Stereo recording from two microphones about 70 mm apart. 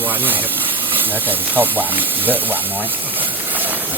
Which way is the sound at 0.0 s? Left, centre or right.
Right.